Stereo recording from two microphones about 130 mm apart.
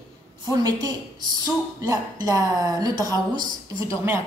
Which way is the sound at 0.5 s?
30° right (ahead or behind).